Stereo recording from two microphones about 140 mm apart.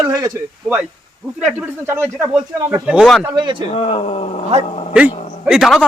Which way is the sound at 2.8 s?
10° right (ahead or behind).